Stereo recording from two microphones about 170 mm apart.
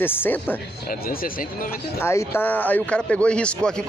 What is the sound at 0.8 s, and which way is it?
Speech, 60° left (ahead or behind).